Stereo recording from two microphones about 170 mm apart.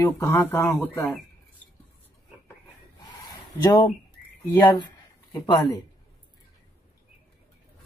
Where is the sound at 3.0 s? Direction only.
20° left (ahead or behind).